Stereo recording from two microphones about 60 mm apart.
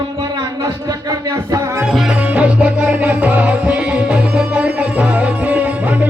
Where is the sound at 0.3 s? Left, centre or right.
Right.